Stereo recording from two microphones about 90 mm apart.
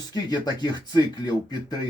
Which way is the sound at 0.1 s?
50° left (ahead or behind).